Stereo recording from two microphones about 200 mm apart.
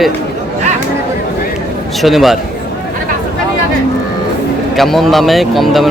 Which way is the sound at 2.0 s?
Centre (ahead or behind).